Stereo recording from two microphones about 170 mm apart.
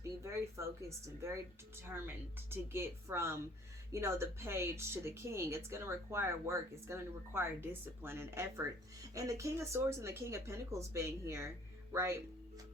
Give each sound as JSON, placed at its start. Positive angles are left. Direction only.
{"t": 0.0, "sound": "speech", "side_deg": -15}
{"t": 2.5, "sound": "speech", "side_deg": -15}